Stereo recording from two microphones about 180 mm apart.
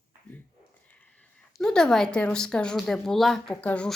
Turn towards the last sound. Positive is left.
turn(degrees=5)  # may be behind; listen again after turning